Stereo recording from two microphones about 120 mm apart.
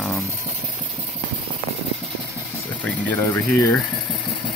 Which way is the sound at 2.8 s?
15° left (ahead or behind).